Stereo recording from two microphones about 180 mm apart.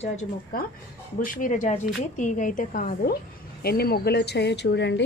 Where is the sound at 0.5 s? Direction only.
55° left (ahead or behind).